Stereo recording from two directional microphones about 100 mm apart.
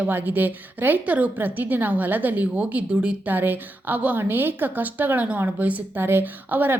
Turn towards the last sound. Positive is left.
turn(degrees=-20)  # may be behind; listen again after turning